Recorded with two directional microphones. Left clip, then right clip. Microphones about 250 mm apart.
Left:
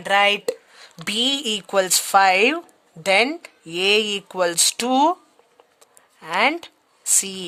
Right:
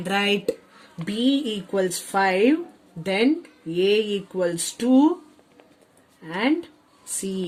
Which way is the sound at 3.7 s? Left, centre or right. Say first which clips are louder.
Left 2 dB; left.